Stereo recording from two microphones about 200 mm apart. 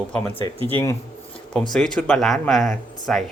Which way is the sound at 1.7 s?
Centre (ahead or behind).